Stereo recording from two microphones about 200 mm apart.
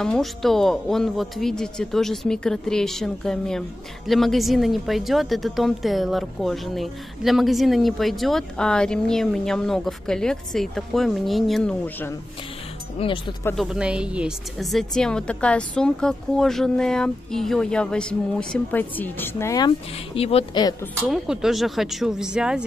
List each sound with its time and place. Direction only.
0.0 s speech: centre (ahead or behind)
13.0 s speech: 30° left (ahead or behind)
13.6 s speech: 5° right (ahead or behind); by 19.7 s 15° left (ahead or behind)
20.2 s speech: 30° left (ahead or behind)
21.1 s speech: centre (ahead or behind)